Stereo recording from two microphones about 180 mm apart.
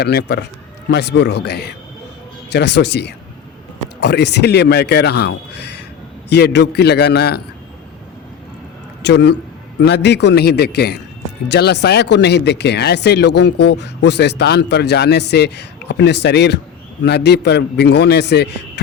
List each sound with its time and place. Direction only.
0.0 s a man's voice: 65° left (ahead or behind)
9.0 s a man's voice: 70° left (ahead or behind)